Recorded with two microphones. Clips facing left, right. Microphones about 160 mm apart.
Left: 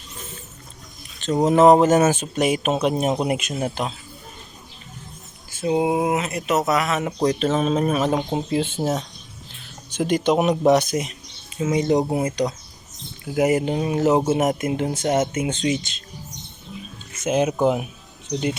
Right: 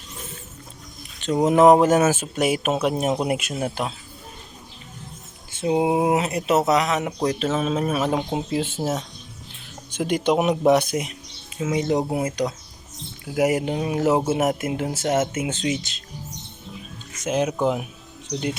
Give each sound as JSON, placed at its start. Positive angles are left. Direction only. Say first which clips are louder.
{"t": 1.2, "sound": "speech", "louder": "even", "side_deg": -10}
{"t": 5.5, "sound": "speech", "louder": "even", "side_deg": -20}
{"t": 7.3, "sound": "speech", "louder": "left 3 dB", "side_deg": -5}
{"t": 17.2, "sound": "speech", "louder": "left 3 dB", "side_deg": 5}